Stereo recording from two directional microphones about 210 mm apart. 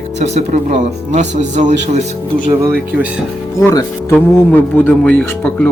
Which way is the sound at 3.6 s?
15° left (ahead or behind).